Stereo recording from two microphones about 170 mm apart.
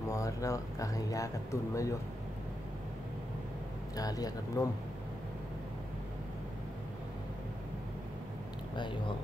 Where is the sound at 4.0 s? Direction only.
20° left (ahead or behind).